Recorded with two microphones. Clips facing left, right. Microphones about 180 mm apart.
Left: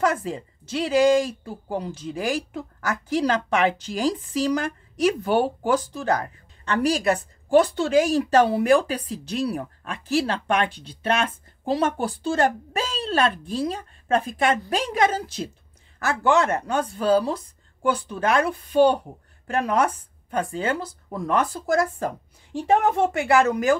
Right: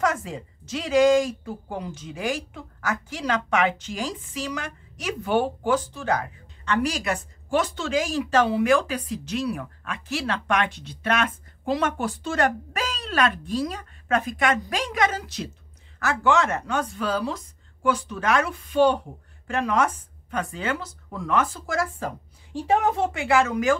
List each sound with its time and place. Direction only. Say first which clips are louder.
0.0 s speech: left 2 dB; 35° left (ahead or behind)
23.1 s speech: left 2 dB; 40° left (ahead or behind)